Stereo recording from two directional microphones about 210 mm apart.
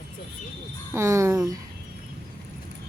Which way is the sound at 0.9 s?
15° right (ahead or behind).